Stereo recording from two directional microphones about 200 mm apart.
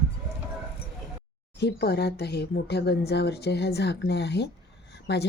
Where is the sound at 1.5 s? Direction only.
55° left (ahead or behind).